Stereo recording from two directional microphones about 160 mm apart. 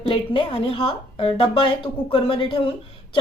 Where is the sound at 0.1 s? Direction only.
35° left (ahead or behind).